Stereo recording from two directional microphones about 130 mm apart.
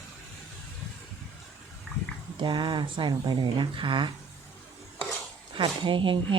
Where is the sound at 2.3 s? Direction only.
35° right (ahead or behind).